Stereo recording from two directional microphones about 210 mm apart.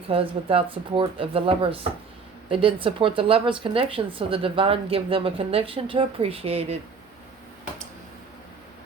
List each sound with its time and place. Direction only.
0.1 s speech: 25° right (ahead or behind)